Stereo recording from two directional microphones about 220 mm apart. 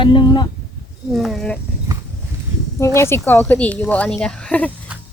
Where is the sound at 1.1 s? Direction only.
Centre (ahead or behind).